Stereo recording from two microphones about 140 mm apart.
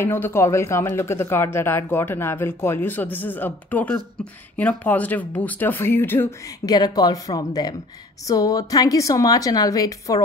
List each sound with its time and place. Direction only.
0.0 s speech: 15° left (ahead or behind)
6.6 s a woman's voice: 30° left (ahead or behind)